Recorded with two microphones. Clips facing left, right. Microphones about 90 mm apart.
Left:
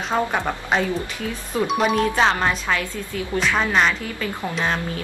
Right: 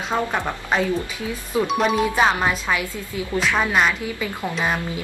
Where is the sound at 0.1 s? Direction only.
5° left (ahead or behind); by 3.3 s 15° right (ahead or behind).